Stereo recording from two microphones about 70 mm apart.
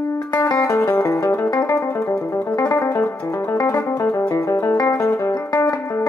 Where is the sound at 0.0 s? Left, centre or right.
Left.